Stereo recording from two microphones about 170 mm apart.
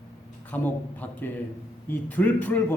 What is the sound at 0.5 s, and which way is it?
A man's voice, 10° left (ahead or behind).